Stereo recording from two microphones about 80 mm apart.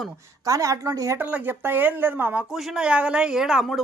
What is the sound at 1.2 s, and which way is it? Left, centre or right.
Speech, centre.